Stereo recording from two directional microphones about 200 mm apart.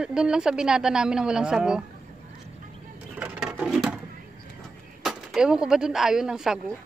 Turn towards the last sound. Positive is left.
turn(degrees=-5)  # may be behind; listen again after turning